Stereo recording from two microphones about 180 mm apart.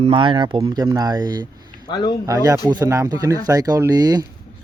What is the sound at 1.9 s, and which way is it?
Speech, 25° left (ahead or behind).